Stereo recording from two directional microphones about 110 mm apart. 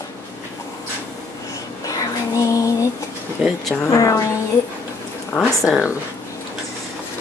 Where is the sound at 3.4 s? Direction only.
Centre (ahead or behind).